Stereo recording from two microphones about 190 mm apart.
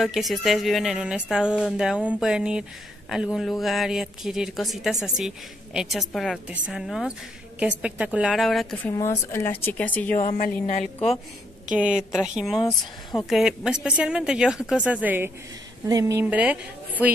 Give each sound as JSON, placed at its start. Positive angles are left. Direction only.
{"t": 0.0, "sound": "a woman's voice", "side_deg": 0}
{"t": 10.1, "sound": "a woman's voice", "side_deg": 45}
{"t": 11.7, "sound": "a woman's voice", "side_deg": -5}